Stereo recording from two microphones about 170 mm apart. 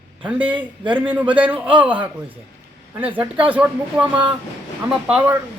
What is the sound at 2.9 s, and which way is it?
A man's voice, 10° right (ahead or behind).